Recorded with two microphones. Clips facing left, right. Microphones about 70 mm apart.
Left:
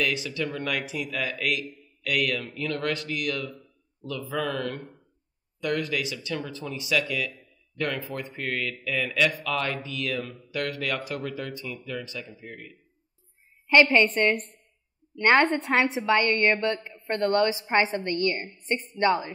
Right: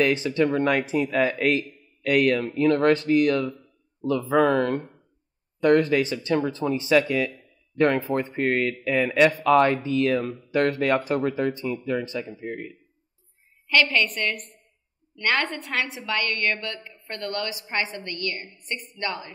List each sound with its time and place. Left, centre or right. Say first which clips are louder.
0.0 s speech: right 7 dB; right
13.7 s a woman's voice: left 3 dB; left